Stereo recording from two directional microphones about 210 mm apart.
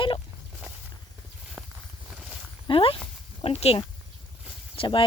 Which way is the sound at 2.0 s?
5° right (ahead or behind).